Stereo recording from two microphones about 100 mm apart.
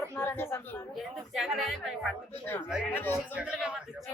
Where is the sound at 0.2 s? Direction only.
20° left (ahead or behind).